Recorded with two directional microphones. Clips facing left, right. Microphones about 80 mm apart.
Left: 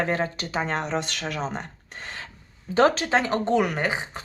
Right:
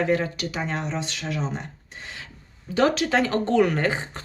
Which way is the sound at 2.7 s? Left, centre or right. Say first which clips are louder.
Left 1 dB; left.